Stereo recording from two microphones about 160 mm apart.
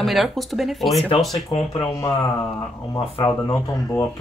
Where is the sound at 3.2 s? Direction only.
20° left (ahead or behind).